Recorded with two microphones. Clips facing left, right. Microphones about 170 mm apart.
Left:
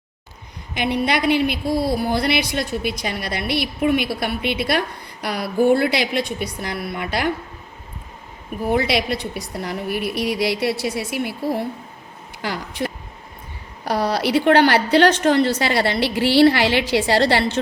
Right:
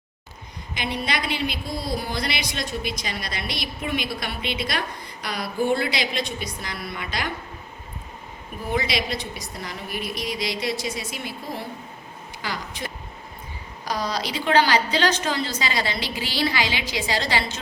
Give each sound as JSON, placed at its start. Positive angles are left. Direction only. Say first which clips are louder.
{"t": 0.7, "sound": "a woman's voice", "louder": "left 7 dB", "side_deg": 60}
{"t": 8.7, "sound": "a woman's voice", "louder": "left 5 dB", "side_deg": 60}
{"t": 12.4, "sound": "a woman's voice", "louder": "left 7 dB", "side_deg": 60}